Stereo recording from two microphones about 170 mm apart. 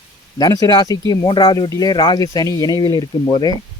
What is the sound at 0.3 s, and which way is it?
Speech, 25° left (ahead or behind).